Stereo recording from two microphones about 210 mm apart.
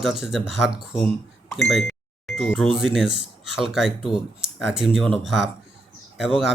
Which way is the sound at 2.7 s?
Centre (ahead or behind).